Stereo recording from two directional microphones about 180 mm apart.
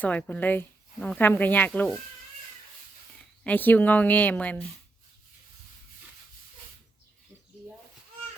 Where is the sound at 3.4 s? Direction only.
10° left (ahead or behind).